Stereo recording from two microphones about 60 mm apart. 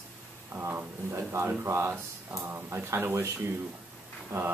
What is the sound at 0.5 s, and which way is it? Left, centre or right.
Speech, right.